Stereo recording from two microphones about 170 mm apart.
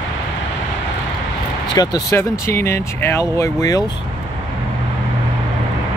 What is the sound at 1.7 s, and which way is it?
Speech, 25° left (ahead or behind).